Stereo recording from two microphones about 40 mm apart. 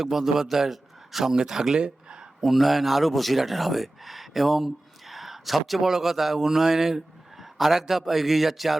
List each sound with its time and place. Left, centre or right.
0.0 s a man's voice: centre
1.8 s a sound: right
2.4 s speech: centre